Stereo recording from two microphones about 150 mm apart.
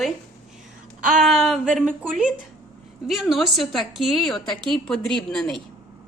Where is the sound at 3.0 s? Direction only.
Centre (ahead or behind).